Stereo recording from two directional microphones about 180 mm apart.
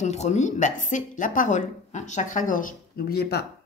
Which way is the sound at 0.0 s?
40° left (ahead or behind).